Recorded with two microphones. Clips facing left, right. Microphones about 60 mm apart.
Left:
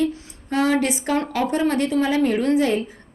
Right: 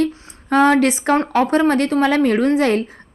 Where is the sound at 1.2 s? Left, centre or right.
Right.